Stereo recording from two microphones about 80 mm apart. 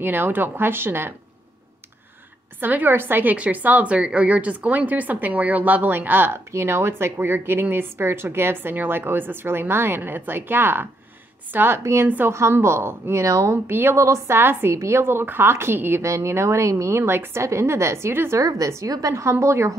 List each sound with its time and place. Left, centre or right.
0.0 s a woman's voice: right
2.6 s a woman's voice: right
13.7 s a woman's voice: right
13.9 s a woman's voice: right
18.4 s a woman's voice: right